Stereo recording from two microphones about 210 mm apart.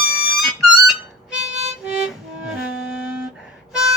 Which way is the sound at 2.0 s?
5° right (ahead or behind).